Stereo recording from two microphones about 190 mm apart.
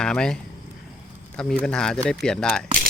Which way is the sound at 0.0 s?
5° left (ahead or behind).